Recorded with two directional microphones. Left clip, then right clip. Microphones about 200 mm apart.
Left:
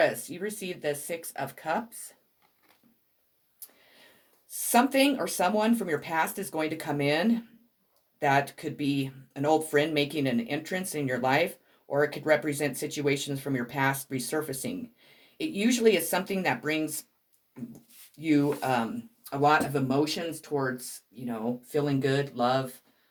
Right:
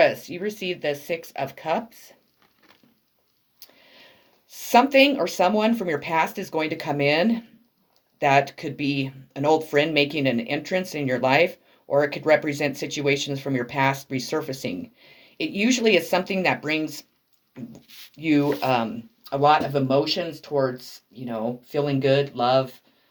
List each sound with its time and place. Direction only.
0.0 s speech: 35° right (ahead or behind)
4.4 s speech: 35° right (ahead or behind)
18.2 s speech: 35° right (ahead or behind)